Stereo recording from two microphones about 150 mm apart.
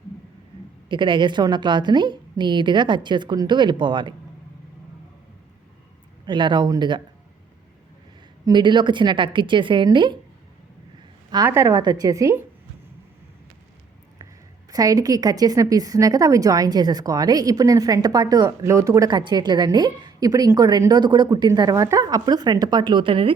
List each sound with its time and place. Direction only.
0.9 s a woman's voice: 30° right (ahead or behind)
6.2 s a woman's voice: 30° right (ahead or behind)
8.4 s a woman's voice: 30° right (ahead or behind)
11.4 s a woman's voice: 20° right (ahead or behind)
14.7 s a woman's voice: 25° right (ahead or behind)